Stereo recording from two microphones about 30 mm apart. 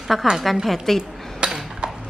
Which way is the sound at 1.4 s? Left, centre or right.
Right.